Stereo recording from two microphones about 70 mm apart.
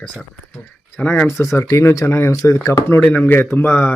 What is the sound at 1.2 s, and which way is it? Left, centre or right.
Speech, left.